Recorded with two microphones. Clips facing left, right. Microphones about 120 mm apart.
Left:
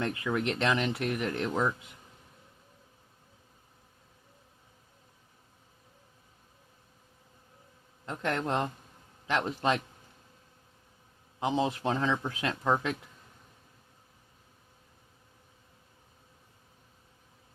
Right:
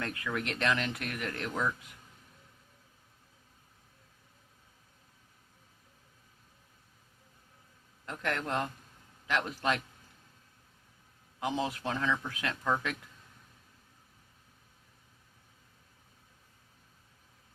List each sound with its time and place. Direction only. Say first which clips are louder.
0.0 s speech: left 5 dB; 20° left (ahead or behind)
8.0 s speech: left 3 dB; 25° left (ahead or behind)
11.3 s speech: left 4 dB; 25° left (ahead or behind)